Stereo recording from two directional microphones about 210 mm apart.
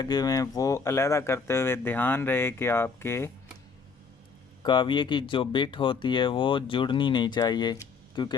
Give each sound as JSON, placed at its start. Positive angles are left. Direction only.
{"t": 0.0, "sound": "speech", "side_deg": 20}
{"t": 4.6, "sound": "speech", "side_deg": 20}